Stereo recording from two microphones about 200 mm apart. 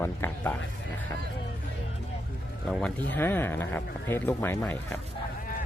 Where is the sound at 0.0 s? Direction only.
10° left (ahead or behind).